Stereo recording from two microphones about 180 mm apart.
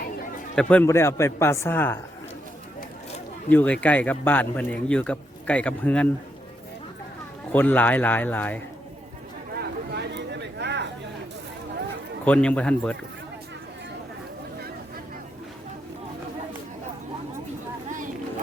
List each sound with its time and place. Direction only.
0.5 s speech: 5° left (ahead or behind)
3.5 s speech: 10° left (ahead or behind)
7.5 s speech: 10° left (ahead or behind)
9.6 s a sound: 70° right (ahead or behind)
12.2 s speech: 5° left (ahead or behind)